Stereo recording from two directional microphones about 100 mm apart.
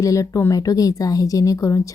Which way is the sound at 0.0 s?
35° left (ahead or behind).